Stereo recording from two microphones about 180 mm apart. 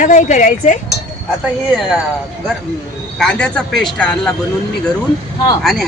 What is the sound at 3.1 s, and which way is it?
Speech, 5° left (ahead or behind).